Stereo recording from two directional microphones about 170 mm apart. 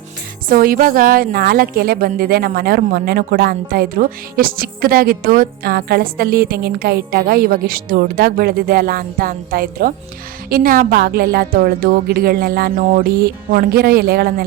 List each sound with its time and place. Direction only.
0.4 s a woman's voice: 55° right (ahead or behind)
13.1 s a woman's voice: 65° right (ahead or behind)